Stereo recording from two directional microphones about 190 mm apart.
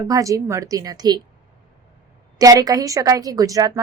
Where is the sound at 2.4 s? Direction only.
20° right (ahead or behind).